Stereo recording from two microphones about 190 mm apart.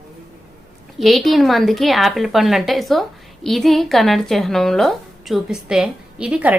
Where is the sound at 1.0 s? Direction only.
Centre (ahead or behind).